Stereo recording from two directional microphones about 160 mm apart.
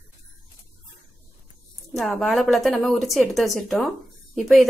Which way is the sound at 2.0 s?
Centre (ahead or behind).